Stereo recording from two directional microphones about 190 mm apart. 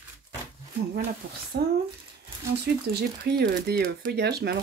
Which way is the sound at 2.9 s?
55° right (ahead or behind).